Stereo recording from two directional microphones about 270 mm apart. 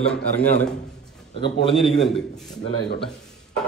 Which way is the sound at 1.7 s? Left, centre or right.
Centre.